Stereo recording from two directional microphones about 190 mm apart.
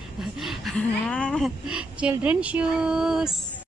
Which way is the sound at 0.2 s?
Centre (ahead or behind).